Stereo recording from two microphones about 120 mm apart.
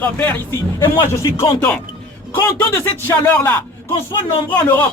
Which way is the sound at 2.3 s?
20° left (ahead or behind).